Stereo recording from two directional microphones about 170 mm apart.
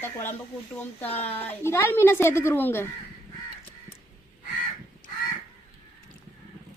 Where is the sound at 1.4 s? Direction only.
10° left (ahead or behind).